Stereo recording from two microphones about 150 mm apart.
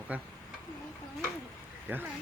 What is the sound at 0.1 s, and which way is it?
Speech, 10° right (ahead or behind).